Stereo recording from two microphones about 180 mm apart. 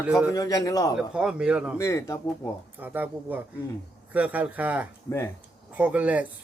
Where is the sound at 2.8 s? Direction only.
10° right (ahead or behind).